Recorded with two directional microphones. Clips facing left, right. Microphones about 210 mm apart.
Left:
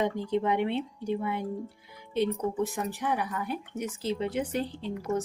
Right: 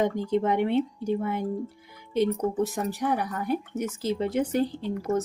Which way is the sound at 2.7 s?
40° right (ahead or behind).